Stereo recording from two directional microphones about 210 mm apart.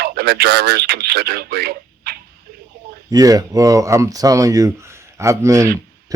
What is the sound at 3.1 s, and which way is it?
Speech, 15° right (ahead or behind).